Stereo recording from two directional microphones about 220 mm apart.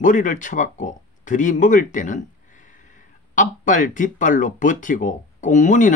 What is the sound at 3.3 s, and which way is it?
Speech, 35° left (ahead or behind).